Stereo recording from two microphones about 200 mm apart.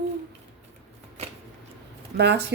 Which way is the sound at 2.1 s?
55° right (ahead or behind).